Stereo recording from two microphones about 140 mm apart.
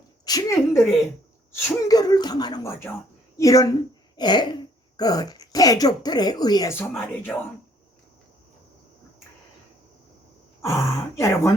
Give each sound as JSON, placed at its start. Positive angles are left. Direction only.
{"t": 0.3, "sound": "speech", "side_deg": 25}
{"t": 2.8, "sound": "speech", "side_deg": 15}
{"t": 6.9, "sound": "speech", "side_deg": 10}
{"t": 10.6, "sound": "speech", "side_deg": 20}